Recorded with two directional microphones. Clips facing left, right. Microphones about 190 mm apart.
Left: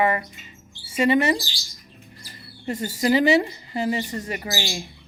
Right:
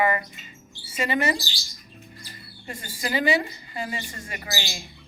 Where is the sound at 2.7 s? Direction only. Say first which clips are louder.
Left 9 dB; 40° left (ahead or behind).